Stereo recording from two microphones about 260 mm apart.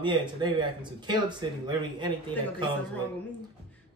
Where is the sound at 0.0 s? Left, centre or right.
Centre.